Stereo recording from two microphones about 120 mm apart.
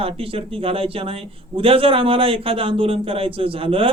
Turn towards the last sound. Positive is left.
turn(degrees=-50)  # may be behind; listen again after turning